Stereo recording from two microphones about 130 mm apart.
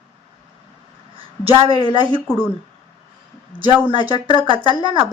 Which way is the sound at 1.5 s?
45° right (ahead or behind).